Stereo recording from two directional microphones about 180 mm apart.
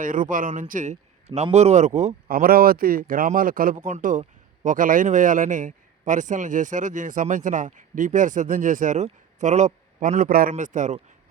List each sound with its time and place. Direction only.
0.0 s speech: 50° right (ahead or behind)